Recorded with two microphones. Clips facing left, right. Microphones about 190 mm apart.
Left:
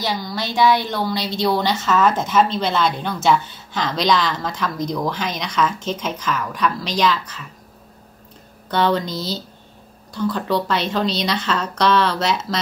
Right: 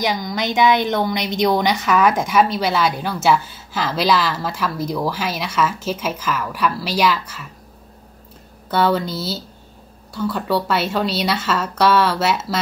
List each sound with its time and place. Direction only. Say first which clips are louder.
0.0 s a woman's voice: right 3 dB; 15° right (ahead or behind)
8.6 s a woman's voice: right 1 dB; 5° right (ahead or behind)